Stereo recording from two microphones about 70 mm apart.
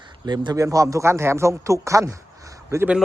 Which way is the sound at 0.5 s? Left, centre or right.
Right.